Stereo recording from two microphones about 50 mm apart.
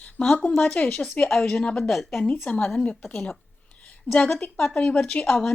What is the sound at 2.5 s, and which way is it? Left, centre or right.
Speech, left.